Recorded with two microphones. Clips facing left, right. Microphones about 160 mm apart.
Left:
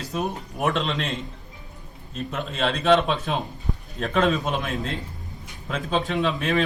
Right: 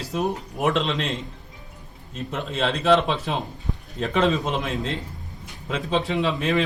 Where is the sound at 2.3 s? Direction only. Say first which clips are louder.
Right 1 dB; centre (ahead or behind).